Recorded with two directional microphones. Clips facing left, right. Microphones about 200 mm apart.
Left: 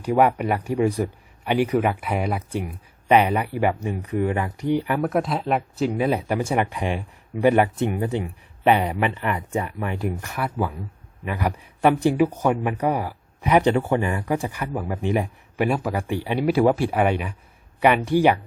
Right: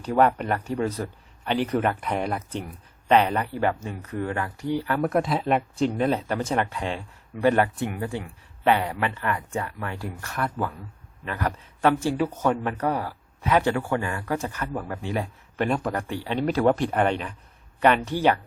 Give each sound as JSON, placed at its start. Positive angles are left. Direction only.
{"t": 0.0, "sound": "speech", "side_deg": 10}
{"t": 4.9, "sound": "speech", "side_deg": 0}
{"t": 7.8, "sound": "speech", "side_deg": 20}